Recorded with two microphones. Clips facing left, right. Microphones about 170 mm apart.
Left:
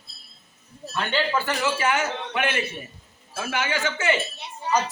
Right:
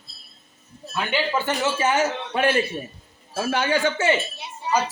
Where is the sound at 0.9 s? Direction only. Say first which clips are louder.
Right 1 dB; 10° right (ahead or behind).